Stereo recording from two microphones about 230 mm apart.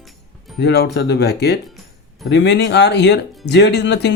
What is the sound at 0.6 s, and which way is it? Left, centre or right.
Speech, left.